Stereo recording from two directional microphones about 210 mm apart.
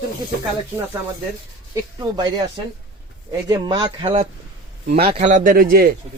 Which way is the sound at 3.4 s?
20° right (ahead or behind).